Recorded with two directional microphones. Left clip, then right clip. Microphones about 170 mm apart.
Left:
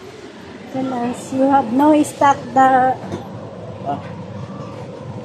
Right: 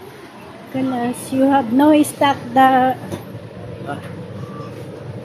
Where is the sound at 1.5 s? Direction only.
30° right (ahead or behind).